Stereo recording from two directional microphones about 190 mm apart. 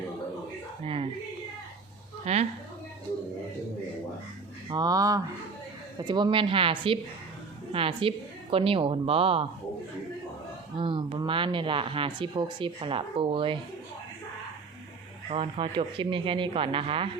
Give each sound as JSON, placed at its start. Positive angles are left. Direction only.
{"t": 2.2, "sound": "a sound", "side_deg": -35}
{"t": 4.7, "sound": "speech", "side_deg": -20}
{"t": 10.8, "sound": "speech", "side_deg": -25}
{"t": 15.3, "sound": "speech", "side_deg": -30}